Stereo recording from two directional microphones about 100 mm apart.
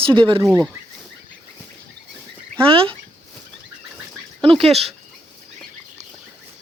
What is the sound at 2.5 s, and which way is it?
Speech, 65° right (ahead or behind).